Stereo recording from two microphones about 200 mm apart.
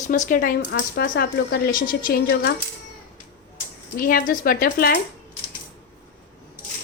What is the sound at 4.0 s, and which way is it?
A woman's voice, 45° left (ahead or behind).